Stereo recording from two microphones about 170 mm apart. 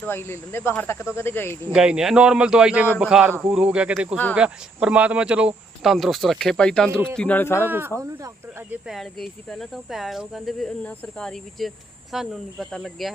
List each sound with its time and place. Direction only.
0.0 s speech: 15° left (ahead or behind)
1.7 s speech: 5° right (ahead or behind); by 7.7 s 15° left (ahead or behind)
7.7 s speech: 15° right (ahead or behind)
8.9 s speech: centre (ahead or behind)